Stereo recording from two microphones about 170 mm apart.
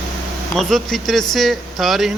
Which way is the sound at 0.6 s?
Centre (ahead or behind).